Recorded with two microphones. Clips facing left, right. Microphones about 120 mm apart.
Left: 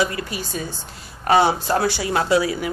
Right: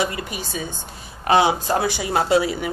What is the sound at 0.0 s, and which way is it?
Speech, 20° right (ahead or behind).